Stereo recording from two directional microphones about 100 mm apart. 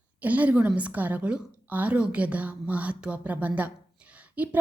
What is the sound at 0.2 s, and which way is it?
A woman's voice, 15° right (ahead or behind).